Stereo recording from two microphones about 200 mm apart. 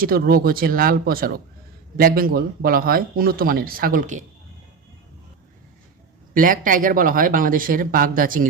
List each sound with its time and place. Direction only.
0.0 s speech: 50° right (ahead or behind)
6.3 s speech: 45° right (ahead or behind)